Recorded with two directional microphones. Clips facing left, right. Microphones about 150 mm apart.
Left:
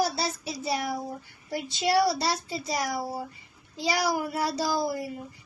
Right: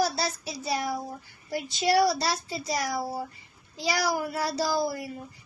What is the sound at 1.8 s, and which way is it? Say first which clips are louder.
Speech: right 1 dB; 25° left (ahead or behind).